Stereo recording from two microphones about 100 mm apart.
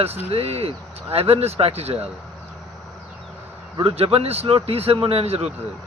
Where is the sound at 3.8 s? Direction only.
70° right (ahead or behind).